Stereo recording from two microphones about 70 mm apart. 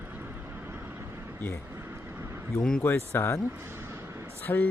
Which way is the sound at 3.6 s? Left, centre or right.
Right.